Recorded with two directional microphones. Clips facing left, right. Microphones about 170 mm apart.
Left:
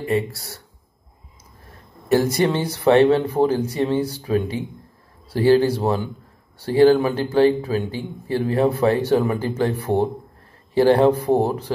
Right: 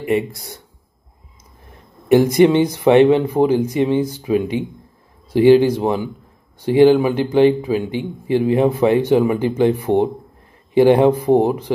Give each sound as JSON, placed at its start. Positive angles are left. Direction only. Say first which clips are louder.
{"t": 0.0, "sound": "a man's voice", "louder": "right 3 dB", "side_deg": -20}
{"t": 1.7, "sound": "a man's voice", "louder": "right 5 dB", "side_deg": -20}